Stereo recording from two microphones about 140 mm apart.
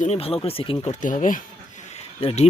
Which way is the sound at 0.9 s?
65° left (ahead or behind).